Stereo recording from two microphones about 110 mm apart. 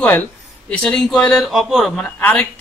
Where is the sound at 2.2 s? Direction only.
15° left (ahead or behind).